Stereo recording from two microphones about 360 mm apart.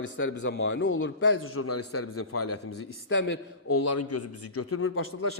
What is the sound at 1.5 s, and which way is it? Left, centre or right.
A man's voice, left.